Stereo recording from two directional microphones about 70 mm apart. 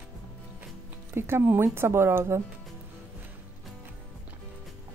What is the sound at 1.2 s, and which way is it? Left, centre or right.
Speech, right.